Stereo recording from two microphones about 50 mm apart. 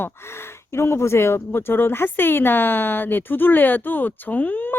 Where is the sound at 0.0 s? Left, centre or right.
Left.